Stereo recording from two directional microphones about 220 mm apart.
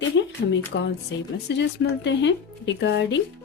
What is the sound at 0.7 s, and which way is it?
Speech, 50° left (ahead or behind).